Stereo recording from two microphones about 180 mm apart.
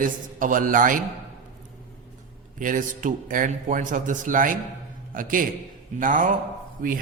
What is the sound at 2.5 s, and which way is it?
A man's voice, 45° right (ahead or behind).